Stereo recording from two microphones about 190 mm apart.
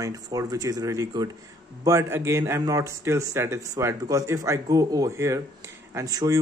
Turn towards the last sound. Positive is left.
turn(degrees=-20)  # may be behind; listen again after turning